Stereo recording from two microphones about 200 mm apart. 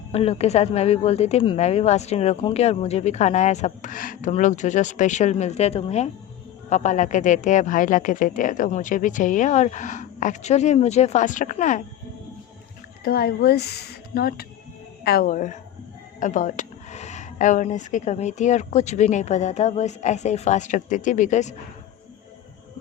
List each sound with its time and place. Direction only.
0.1 s speech: 30° left (ahead or behind)
13.1 s a woman's voice: 50° left (ahead or behind)